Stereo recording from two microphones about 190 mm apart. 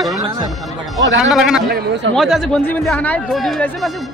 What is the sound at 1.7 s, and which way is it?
Speech, 60° right (ahead or behind).